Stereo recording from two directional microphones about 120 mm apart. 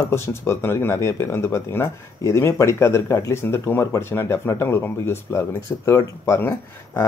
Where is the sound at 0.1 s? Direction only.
20° left (ahead or behind).